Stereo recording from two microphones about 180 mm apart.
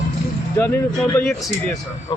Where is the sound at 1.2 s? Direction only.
5° left (ahead or behind).